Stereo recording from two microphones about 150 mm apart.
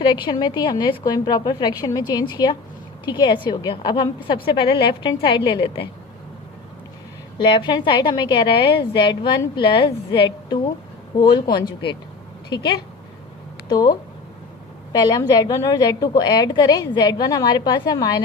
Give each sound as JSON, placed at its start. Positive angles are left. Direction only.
{"t": 0.0, "sound": "a woman's voice", "side_deg": 30}
{"t": 7.3, "sound": "a woman's voice", "side_deg": 35}
{"t": 13.7, "sound": "speech", "side_deg": 25}
{"t": 14.9, "sound": "a woman's voice", "side_deg": 25}